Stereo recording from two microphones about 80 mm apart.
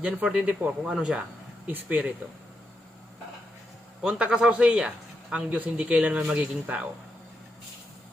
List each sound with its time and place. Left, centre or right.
0.0 s speech: centre
1.6 s speech: centre
4.0 s speech: centre